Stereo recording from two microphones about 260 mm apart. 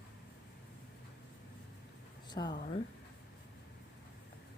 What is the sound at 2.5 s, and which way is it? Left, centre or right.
Speech, left.